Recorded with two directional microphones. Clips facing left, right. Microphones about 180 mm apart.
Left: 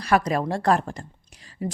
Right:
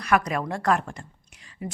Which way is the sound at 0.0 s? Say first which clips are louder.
Left 2 dB; 30° left (ahead or behind).